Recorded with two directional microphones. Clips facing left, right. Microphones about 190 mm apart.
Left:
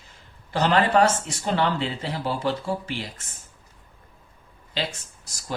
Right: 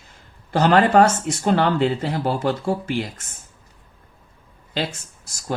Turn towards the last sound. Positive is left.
turn(degrees=-50)  # may be behind; listen again after turning